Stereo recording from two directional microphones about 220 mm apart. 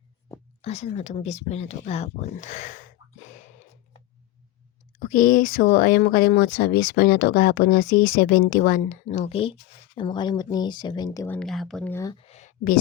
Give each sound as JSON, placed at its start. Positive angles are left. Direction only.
{"t": 0.6, "sound": "speech", "side_deg": 30}
{"t": 4.9, "sound": "speech", "side_deg": 40}
{"t": 11.3, "sound": "speech", "side_deg": 0}
{"t": 12.1, "sound": "speech", "side_deg": 30}